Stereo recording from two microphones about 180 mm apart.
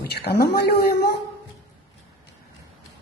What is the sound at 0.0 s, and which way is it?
A woman's voice, 65° left (ahead or behind).